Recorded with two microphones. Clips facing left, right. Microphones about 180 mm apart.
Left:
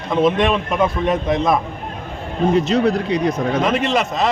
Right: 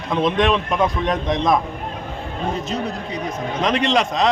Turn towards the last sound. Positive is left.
turn(degrees=5)  # may be behind; listen again after turning